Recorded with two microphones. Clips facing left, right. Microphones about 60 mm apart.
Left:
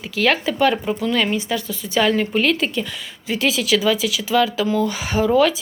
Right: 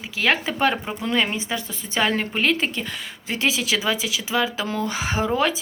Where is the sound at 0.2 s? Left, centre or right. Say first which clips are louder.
Left 3 dB; right.